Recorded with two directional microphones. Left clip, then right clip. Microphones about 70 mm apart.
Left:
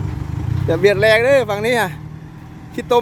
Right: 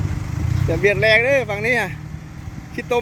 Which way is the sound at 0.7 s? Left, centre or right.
Left.